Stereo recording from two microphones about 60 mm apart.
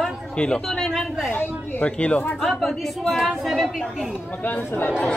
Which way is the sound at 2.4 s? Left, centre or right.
Centre.